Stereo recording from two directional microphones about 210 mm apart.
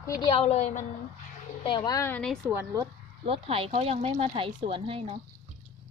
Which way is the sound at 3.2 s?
25° right (ahead or behind).